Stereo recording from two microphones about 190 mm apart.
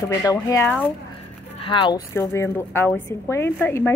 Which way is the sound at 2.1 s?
15° left (ahead or behind).